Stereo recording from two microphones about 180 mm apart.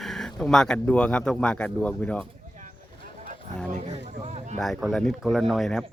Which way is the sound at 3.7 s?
40° right (ahead or behind).